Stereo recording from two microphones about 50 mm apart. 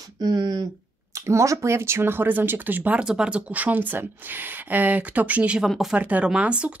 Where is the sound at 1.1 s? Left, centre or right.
Right.